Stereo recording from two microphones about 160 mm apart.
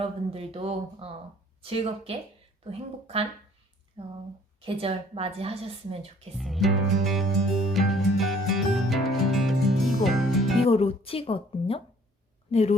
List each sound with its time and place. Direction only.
0.0 s a woman's voice: 40° right (ahead or behind)
6.3 s music: centre (ahead or behind)
10.7 s a woman's voice: 40° left (ahead or behind)